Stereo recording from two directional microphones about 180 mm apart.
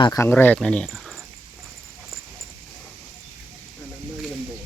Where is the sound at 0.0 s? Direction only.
15° left (ahead or behind).